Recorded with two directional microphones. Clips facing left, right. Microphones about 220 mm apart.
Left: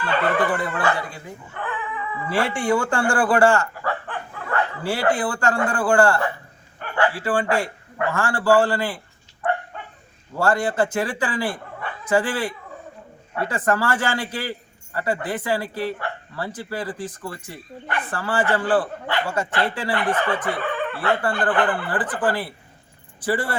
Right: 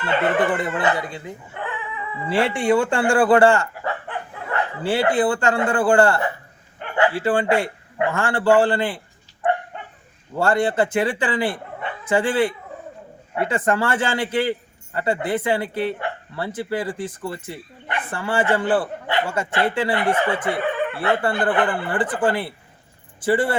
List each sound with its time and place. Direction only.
0.0 s speech: 25° right (ahead or behind)
2.3 s a man's voice: 25° right (ahead or behind)
9.7 s dog: 20° right (ahead or behind)
10.4 s speech: 25° right (ahead or behind)